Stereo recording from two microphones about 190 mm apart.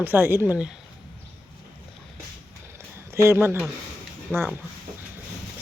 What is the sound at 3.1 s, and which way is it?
Speech, 15° right (ahead or behind).